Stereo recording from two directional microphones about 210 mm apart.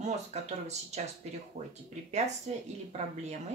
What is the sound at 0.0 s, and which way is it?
Speech, 30° right (ahead or behind).